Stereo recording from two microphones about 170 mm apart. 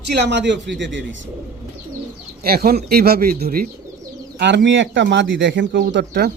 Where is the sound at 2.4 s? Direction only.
65° right (ahead or behind).